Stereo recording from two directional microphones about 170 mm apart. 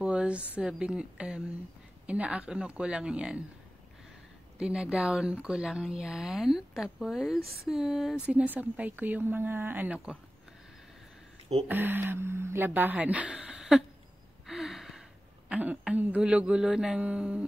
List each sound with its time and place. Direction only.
0.0 s a sound: 5° right (ahead or behind)
0.6 s speech: 5° right (ahead or behind)
4.6 s speech: 5° right (ahead or behind)
11.6 s speech: 10° right (ahead or behind)